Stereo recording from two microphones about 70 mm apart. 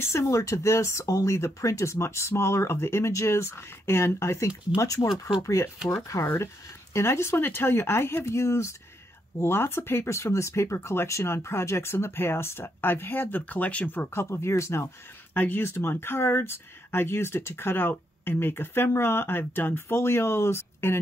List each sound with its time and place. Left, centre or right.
0.0 s speech: left
4.7 s speech: left
15.3 s speech: left